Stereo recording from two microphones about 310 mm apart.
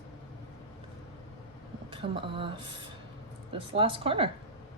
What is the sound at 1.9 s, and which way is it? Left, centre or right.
Speech, centre.